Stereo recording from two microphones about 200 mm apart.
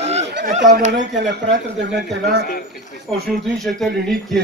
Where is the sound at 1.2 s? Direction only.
60° right (ahead or behind).